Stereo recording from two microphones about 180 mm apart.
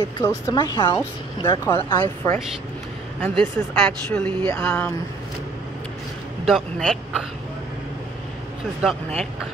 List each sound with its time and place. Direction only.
0.0 s speech: 20° left (ahead or behind)
6.4 s speech: centre (ahead or behind)
8.8 s speech: 5° right (ahead or behind)